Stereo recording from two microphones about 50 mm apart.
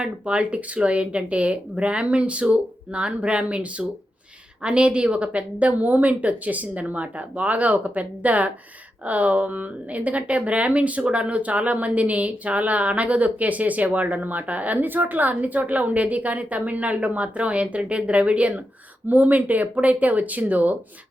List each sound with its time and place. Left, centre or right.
0.0 s a woman's voice: centre